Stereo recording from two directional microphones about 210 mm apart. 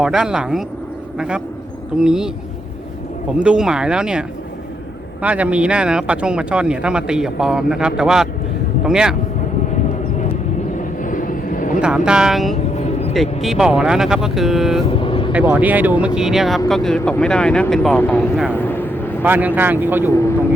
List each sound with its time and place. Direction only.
0.0 s speech: 5° right (ahead or behind)
2.0 s speech: 5° right (ahead or behind)
3.4 s speech: 5° right (ahead or behind)
10.8 s vehicle: 40° left (ahead or behind)
11.8 s speech: 5° right (ahead or behind)
12.7 s vehicle: 30° left (ahead or behind)
13.4 s speech: centre (ahead or behind)
14.8 s vehicle: 25° left (ahead or behind)
15.3 s speech: 5° right (ahead or behind)
18.5 s a sound: 10° left (ahead or behind)
19.2 s speech: 10° right (ahead or behind)